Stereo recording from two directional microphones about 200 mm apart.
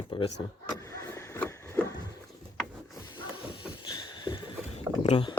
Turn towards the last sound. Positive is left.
turn(degrees=30)  # may be behind; listen again after turning